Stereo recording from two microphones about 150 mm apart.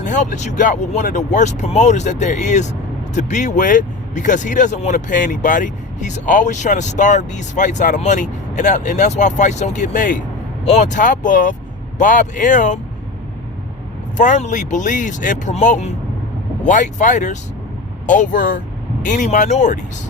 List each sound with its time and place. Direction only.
0.0 s speech: 55° left (ahead or behind)
10.7 s speech: 50° left (ahead or behind)
14.2 s speech: 55° left (ahead or behind)